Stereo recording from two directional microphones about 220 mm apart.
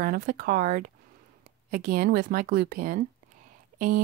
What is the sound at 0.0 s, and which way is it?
Speech, 40° right (ahead or behind).